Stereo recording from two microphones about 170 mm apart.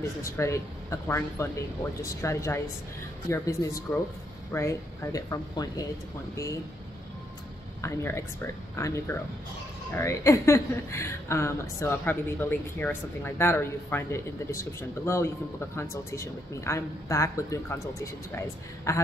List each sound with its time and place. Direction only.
0.0 s a woman's voice: 15° left (ahead or behind)
7.8 s a woman's voice: 15° left (ahead or behind)